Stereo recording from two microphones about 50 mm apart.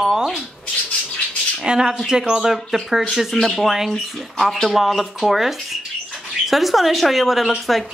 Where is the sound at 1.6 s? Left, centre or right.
Centre.